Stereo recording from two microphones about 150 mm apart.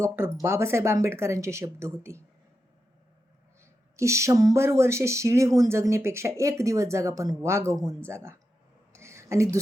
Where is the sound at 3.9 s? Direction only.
20° right (ahead or behind).